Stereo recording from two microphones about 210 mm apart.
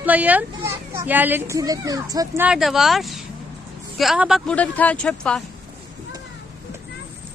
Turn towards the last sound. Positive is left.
turn(degrees=5)  # may be behind; listen again after turning